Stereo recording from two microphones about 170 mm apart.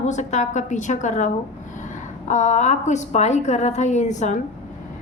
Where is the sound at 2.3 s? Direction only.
45° left (ahead or behind).